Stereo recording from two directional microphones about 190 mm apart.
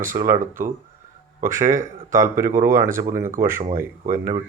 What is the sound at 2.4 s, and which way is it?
Speech, 45° right (ahead or behind).